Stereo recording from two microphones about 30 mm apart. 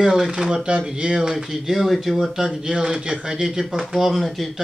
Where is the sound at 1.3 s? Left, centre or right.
Centre.